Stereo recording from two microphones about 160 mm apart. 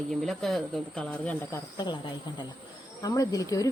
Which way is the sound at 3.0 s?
20° left (ahead or behind).